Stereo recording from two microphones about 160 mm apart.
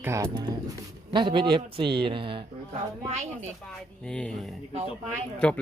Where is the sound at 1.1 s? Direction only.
30° right (ahead or behind).